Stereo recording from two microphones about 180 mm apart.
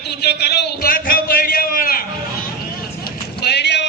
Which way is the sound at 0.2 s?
65° left (ahead or behind).